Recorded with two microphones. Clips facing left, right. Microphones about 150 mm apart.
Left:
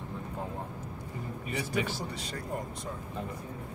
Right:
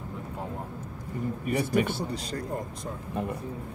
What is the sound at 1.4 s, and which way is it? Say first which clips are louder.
Speech: right 6 dB; 50° right (ahead or behind).